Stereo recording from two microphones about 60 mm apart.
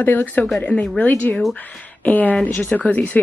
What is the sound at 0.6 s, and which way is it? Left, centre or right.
A woman's voice, left.